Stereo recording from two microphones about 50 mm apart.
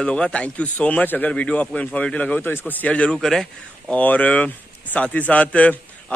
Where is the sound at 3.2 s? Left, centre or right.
Centre.